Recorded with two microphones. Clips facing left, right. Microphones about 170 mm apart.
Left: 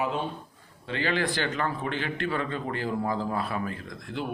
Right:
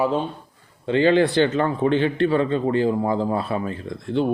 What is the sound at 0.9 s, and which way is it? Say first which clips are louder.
Speech: right 11 dB; 25° right (ahead or behind).